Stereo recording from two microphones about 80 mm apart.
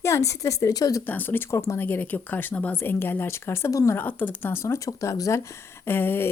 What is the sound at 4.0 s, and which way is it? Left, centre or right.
A woman's voice, left.